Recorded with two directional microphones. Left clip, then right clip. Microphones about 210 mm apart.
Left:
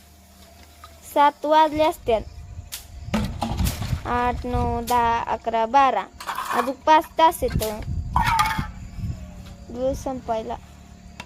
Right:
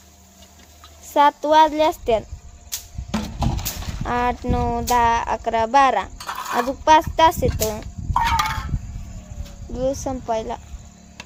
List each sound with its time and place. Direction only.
1.1 s speech: 15° right (ahead or behind)
2.7 s music: 50° right (ahead or behind)
3.1 s a sound: 15° left (ahead or behind)
4.0 s speech: 15° right (ahead or behind)
6.1 s a sound: centre (ahead or behind)
6.7 s speech: 15° right (ahead or behind)
7.8 s fowl: 5° left (ahead or behind)
9.7 s speech: 15° right (ahead or behind)